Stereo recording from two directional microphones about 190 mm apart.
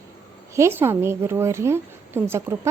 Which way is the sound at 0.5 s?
15° right (ahead or behind).